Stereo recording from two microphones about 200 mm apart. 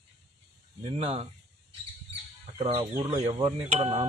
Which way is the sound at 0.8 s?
30° right (ahead or behind).